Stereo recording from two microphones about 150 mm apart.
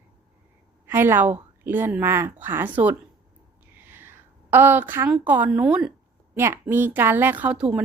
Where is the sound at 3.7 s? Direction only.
15° right (ahead or behind).